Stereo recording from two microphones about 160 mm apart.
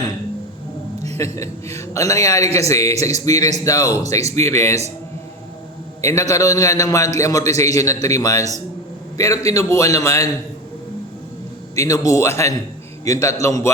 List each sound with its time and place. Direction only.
1.2 s a man's voice: 20° left (ahead or behind)
6.0 s a man's voice: 20° left (ahead or behind)
11.8 s a man's voice: 20° left (ahead or behind)